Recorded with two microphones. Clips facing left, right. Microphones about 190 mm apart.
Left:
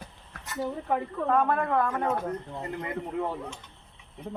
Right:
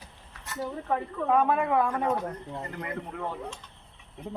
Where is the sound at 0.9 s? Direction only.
10° left (ahead or behind).